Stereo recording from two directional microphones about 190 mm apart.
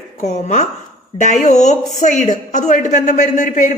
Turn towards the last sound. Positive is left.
turn(degrees=40)  # may be behind; listen again after turning